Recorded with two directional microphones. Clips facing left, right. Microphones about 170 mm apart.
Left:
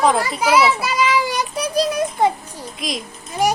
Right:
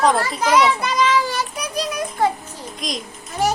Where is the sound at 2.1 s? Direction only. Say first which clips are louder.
Left 2 dB; 20° left (ahead or behind).